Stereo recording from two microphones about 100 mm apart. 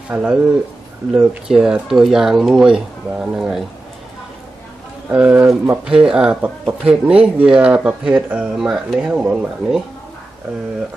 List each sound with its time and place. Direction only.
0.1 s speech: 10° right (ahead or behind)
5.1 s speech: 20° right (ahead or behind)
5.9 s speech: 10° right (ahead or behind)